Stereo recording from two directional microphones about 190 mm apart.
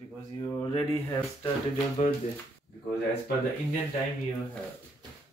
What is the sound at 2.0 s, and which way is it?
Speech, 40° left (ahead or behind).